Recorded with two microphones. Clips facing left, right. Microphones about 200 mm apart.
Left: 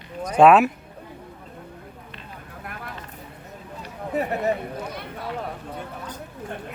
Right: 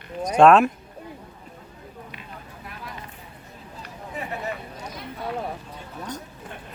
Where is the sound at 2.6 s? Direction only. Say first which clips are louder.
Left 4 dB; 55° left (ahead or behind).